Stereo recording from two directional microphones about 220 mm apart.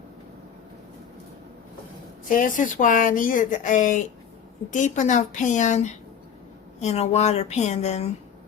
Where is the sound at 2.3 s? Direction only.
35° left (ahead or behind).